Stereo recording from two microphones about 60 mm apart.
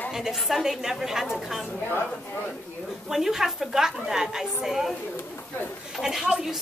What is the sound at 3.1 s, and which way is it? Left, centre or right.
Speech, centre.